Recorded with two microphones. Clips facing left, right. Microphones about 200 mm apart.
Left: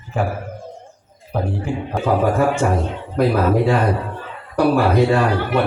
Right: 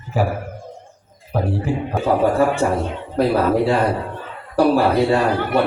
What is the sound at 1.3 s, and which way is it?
Speech, 5° right (ahead or behind).